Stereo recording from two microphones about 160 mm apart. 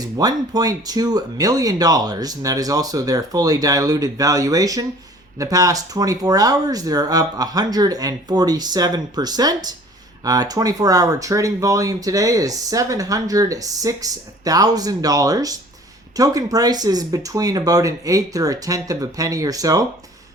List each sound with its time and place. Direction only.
0.0 s speech: 25° right (ahead or behind)